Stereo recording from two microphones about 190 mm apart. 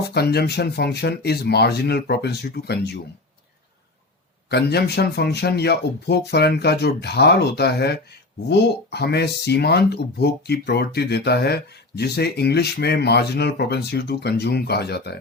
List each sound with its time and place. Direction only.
0.1 s speech: 60° left (ahead or behind)
4.4 s speech: 60° left (ahead or behind)